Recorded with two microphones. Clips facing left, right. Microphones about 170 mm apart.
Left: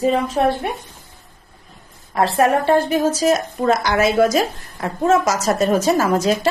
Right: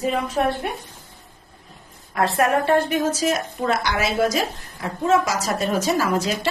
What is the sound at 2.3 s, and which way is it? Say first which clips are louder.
A woman's voice: left 3 dB; 30° left (ahead or behind).